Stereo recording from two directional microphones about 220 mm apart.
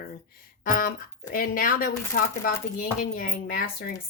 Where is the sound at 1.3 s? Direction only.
40° left (ahead or behind).